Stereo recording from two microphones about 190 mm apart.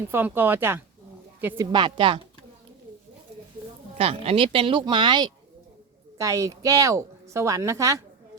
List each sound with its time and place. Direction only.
0.1 s a woman's voice: 10° right (ahead or behind)
1.7 s speech: 25° right (ahead or behind)
3.9 s a woman's voice: 30° right (ahead or behind)